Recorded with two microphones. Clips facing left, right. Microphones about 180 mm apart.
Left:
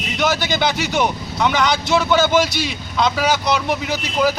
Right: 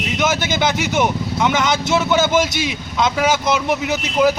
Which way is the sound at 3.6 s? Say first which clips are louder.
Right 2 dB; 15° right (ahead or behind).